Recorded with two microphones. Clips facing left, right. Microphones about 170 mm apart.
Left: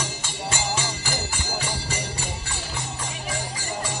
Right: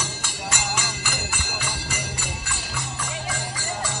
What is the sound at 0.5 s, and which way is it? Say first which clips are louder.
Music: left 2 dB; 25° left (ahead or behind).